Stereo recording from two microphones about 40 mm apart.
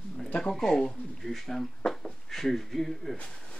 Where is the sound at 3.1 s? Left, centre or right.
Left.